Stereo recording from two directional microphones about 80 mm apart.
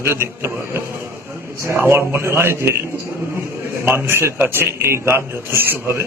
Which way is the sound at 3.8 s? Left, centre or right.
Right.